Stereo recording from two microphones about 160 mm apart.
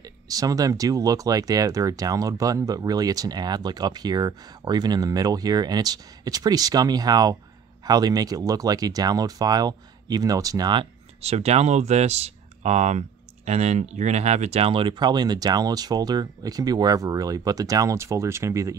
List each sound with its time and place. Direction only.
0.0 s speech: 25° right (ahead or behind)